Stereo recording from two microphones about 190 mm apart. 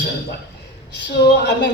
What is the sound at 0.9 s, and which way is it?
Speech, 65° left (ahead or behind).